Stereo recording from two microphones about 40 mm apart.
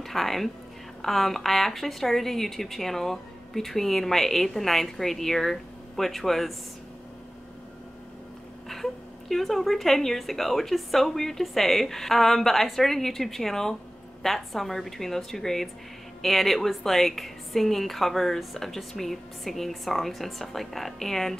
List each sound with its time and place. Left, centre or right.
0.0 s a woman's voice: centre
8.6 s a woman's voice: centre